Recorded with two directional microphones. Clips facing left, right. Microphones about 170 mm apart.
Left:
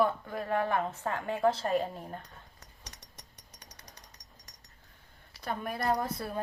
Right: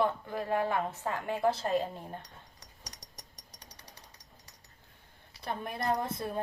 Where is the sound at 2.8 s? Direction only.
35° right (ahead or behind).